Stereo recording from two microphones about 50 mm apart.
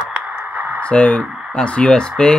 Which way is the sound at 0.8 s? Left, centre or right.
Left.